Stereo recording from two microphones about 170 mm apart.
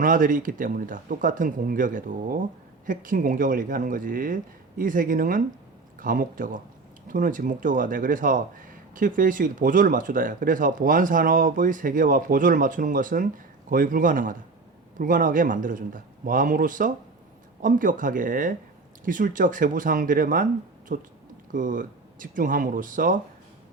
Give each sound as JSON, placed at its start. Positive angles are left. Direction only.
{"t": 0.0, "sound": "speech", "side_deg": -50}